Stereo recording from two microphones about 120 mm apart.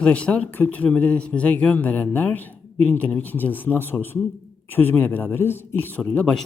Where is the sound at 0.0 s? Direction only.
10° left (ahead or behind).